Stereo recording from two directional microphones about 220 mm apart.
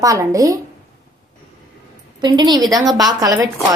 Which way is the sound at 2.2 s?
20° right (ahead or behind).